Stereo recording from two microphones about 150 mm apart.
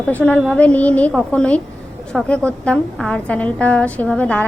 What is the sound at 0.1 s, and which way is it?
A woman's voice, 10° left (ahead or behind).